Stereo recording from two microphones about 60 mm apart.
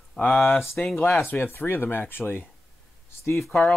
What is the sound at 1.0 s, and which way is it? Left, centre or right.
Speech, left.